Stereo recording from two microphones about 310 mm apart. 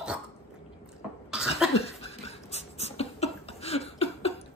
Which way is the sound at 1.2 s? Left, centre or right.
Centre.